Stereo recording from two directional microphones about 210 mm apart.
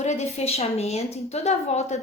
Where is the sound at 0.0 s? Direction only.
35° left (ahead or behind).